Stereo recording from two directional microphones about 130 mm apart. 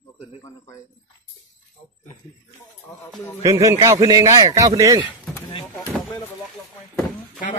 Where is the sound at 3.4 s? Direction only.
25° right (ahead or behind).